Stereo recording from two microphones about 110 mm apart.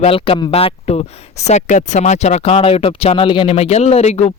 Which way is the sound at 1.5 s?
90° left.